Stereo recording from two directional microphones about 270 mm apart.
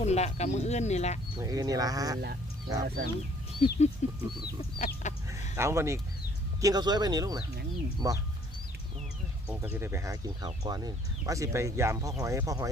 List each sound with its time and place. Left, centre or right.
0.0 s speech: left
1.4 s speech: centre
2.8 s speech: right
3.6 s speech: left
4.8 s chicken: left
5.5 s speech: centre
9.5 s speech: centre